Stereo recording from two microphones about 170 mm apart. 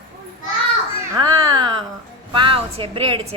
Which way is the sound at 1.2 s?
25° right (ahead or behind).